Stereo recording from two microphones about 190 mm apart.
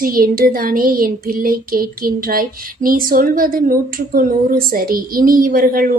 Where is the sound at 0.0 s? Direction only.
50° right (ahead or behind).